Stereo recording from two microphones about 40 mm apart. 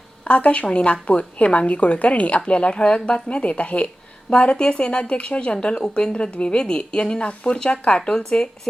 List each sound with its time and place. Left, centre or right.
0.3 s a woman's voice: left